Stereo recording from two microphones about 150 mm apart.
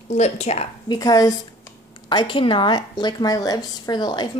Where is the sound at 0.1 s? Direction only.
45° left (ahead or behind).